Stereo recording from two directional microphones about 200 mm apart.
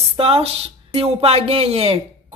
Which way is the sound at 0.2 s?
30° right (ahead or behind).